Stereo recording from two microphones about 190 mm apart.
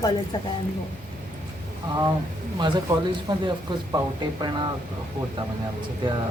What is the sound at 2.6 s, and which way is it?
Speech, 25° right (ahead or behind).